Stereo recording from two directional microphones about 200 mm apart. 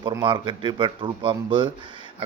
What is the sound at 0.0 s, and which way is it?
Speech, 25° right (ahead or behind).